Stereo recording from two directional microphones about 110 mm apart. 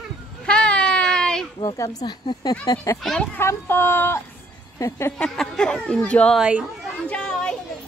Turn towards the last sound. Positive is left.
turn(degrees=10)  # may be behind; listen again after turning